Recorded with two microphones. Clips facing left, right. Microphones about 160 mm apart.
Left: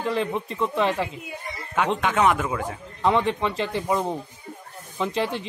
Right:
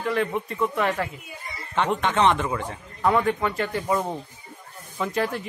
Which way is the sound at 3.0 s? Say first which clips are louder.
Even; 25° left (ahead or behind).